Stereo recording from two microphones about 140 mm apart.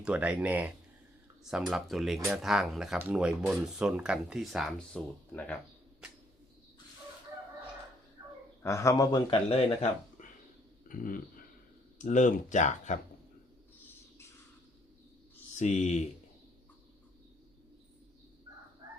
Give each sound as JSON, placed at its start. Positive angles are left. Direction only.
{"t": 0.0, "sound": "speech", "side_deg": -10}
{"t": 8.6, "sound": "a man's voice", "side_deg": 20}
{"t": 9.3, "sound": "speech", "side_deg": 45}
{"t": 10.8, "sound": "speech", "side_deg": 80}
{"t": 11.9, "sound": "speech", "side_deg": 60}
{"t": 15.5, "sound": "speech", "side_deg": 55}